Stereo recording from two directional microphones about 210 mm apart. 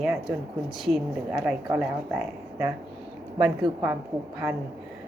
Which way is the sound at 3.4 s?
10° right (ahead or behind).